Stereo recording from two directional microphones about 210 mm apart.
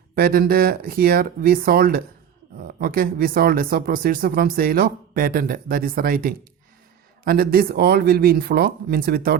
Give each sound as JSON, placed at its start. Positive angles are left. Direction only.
{"t": 0.2, "sound": "speech", "side_deg": -45}